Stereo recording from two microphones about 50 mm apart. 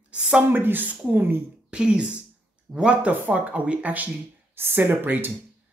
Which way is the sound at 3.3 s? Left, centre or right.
Right.